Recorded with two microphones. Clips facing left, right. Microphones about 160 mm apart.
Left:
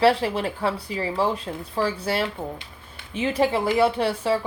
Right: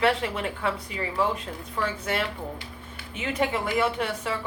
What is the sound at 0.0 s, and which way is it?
A woman's voice, 30° left (ahead or behind).